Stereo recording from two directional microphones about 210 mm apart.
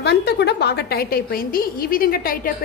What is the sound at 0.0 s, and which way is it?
A woman's voice, 50° left (ahead or behind).